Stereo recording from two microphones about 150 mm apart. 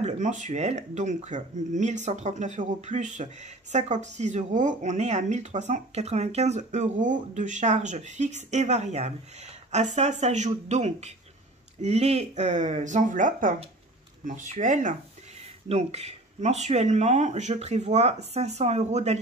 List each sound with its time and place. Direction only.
0.0 s speech: 55° right (ahead or behind)
15.7 s speech: 45° right (ahead or behind)